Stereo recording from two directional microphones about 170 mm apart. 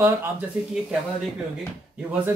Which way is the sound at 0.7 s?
5° right (ahead or behind).